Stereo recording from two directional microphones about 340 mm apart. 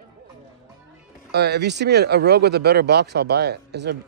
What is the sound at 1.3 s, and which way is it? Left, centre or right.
Speech, right.